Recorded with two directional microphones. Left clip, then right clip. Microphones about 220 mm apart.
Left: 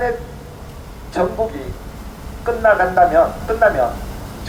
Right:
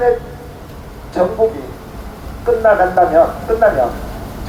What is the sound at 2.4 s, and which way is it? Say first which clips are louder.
Speech: right 3 dB; 55° left (ahead or behind).